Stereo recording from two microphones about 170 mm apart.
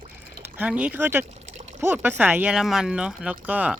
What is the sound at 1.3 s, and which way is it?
Pour, 40° right (ahead or behind).